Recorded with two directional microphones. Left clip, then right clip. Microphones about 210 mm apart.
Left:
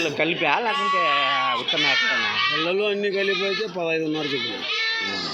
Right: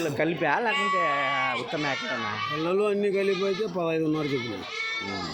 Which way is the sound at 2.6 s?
60° right (ahead or behind).